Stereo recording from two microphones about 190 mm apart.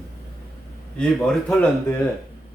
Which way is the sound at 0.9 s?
5° left (ahead or behind).